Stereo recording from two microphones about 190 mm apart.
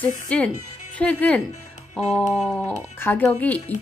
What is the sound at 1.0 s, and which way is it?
A woman's voice, 5° left (ahead or behind).